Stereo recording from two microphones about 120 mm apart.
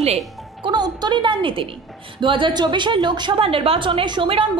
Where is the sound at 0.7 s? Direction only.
40° right (ahead or behind).